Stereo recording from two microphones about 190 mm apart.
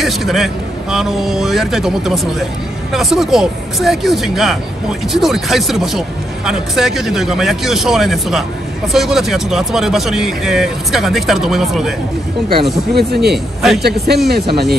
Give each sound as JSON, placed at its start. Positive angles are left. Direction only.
{"t": 0.0, "sound": "speech", "side_deg": 0}
{"t": 12.9, "sound": "speech", "side_deg": -60}